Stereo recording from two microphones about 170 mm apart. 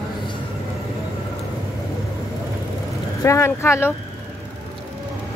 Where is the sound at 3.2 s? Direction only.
15° left (ahead or behind).